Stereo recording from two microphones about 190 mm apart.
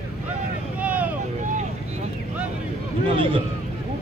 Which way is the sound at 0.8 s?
10° right (ahead or behind).